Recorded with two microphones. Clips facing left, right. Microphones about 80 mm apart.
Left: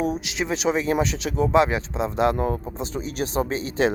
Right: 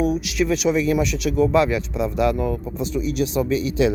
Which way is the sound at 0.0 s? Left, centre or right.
Left.